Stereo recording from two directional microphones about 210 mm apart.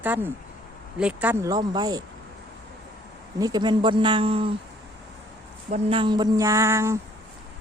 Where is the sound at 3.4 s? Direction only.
20° right (ahead or behind).